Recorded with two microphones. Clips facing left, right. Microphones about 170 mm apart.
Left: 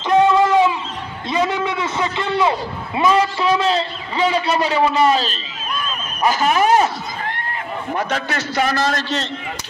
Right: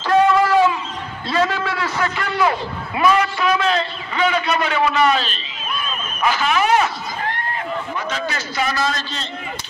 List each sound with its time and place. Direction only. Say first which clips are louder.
0.0 s a sound: left 1 dB; 20° left (ahead or behind)
1.3 s a man's voice: left 1 dB; 20° left (ahead or behind); by 6.9 s 40° left (ahead or behind)
7.9 s a man's voice: left 3 dB; 60° left (ahead or behind)